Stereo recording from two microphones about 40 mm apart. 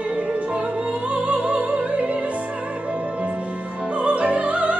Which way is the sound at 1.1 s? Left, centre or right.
Right.